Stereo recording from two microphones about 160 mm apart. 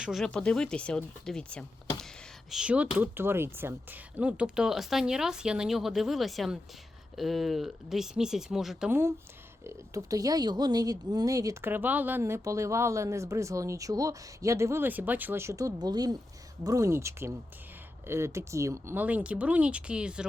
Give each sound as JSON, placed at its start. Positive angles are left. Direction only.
{"t": 0.0, "sound": "speech", "side_deg": 0}
{"t": 2.5, "sound": "speech", "side_deg": -5}
{"t": 8.9, "sound": "speech", "side_deg": -15}